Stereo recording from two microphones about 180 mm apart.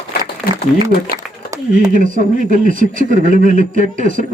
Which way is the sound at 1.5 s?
20° right (ahead or behind).